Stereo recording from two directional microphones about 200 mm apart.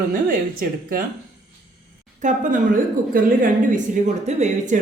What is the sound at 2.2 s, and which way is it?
A woman's voice, 40° right (ahead or behind).